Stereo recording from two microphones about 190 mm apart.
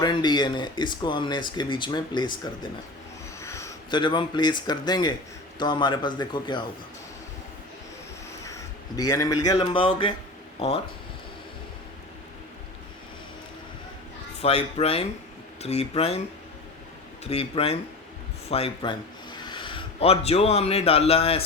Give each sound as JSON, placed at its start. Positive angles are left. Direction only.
{"t": 0.0, "sound": "speech", "side_deg": 25}
{"t": 9.0, "sound": "speech", "side_deg": 20}
{"t": 14.4, "sound": "speech", "side_deg": 30}
{"t": 17.2, "sound": "speech", "side_deg": 30}